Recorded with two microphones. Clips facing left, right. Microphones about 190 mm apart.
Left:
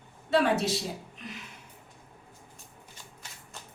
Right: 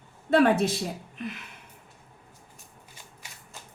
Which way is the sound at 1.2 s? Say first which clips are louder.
Right 8 dB; 55° right (ahead or behind).